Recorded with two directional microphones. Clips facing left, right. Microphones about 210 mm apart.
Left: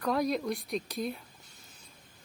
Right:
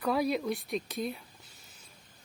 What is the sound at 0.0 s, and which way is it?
Speech, 5° right (ahead or behind).